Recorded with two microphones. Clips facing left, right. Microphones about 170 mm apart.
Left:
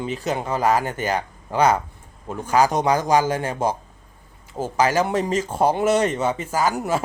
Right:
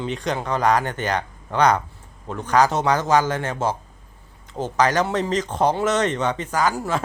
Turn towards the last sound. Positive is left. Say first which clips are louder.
# left 1 dB
turn(degrees=10)  # may be behind; listen again after turning